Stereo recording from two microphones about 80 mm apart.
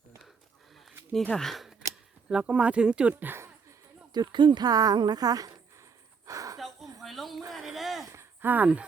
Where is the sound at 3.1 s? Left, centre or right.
Right.